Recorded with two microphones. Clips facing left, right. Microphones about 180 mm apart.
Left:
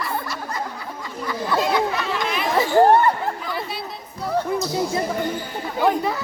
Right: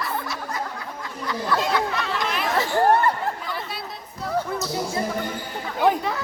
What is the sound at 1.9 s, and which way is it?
Chatter, 5° left (ahead or behind).